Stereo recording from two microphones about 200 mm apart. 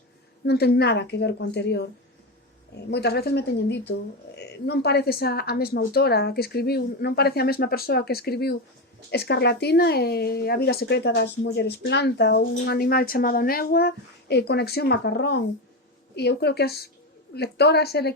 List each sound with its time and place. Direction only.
0.4 s speech: 55° left (ahead or behind)